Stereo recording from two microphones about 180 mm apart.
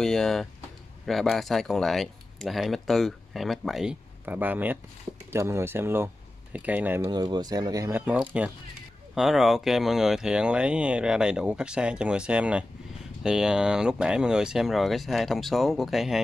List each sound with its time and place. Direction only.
0.0 s speech: 5° left (ahead or behind)
7.1 s speech: 25° right (ahead or behind); by 16.2 s centre (ahead or behind)